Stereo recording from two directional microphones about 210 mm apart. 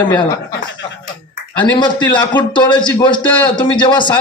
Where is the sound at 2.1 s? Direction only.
20° left (ahead or behind).